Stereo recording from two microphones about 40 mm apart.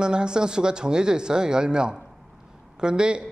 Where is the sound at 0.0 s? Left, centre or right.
Right.